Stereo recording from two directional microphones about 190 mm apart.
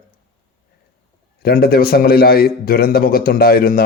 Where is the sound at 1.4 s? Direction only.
50° left (ahead or behind).